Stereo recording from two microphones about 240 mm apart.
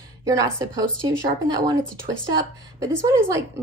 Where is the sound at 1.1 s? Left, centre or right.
Centre.